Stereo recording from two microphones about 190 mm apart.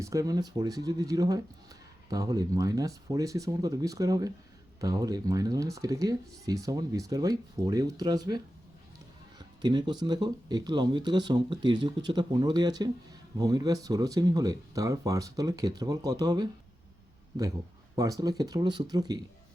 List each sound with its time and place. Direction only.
0.0 s speech: 15° right (ahead or behind)
9.4 s speech: 20° right (ahead or behind)
17.9 s speech: 20° right (ahead or behind)